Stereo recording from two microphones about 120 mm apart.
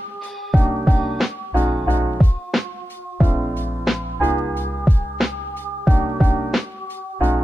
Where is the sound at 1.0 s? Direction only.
Centre (ahead or behind).